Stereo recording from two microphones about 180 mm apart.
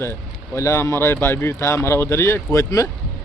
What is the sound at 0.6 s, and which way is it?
Speech, 15° left (ahead or behind).